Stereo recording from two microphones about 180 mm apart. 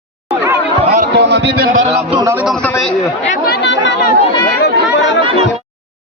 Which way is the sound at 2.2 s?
15° right (ahead or behind).